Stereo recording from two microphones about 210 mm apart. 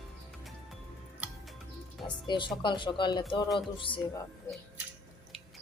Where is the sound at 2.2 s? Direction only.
20° left (ahead or behind).